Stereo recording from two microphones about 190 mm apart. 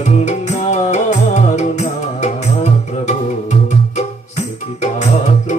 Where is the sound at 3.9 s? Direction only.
35° left (ahead or behind).